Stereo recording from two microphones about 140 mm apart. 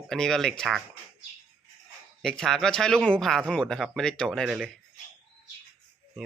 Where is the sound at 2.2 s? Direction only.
5° left (ahead or behind).